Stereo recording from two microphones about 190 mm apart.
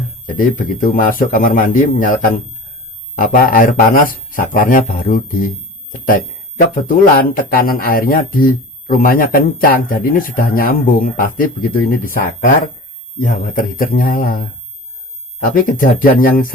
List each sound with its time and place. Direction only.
0.3 s speech: 45° left (ahead or behind)
15.4 s speech: 45° left (ahead or behind)